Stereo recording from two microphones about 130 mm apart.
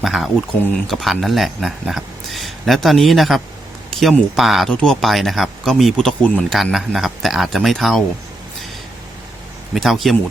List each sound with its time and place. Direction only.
0.0 s speech: centre (ahead or behind)
9.7 s speech: centre (ahead or behind)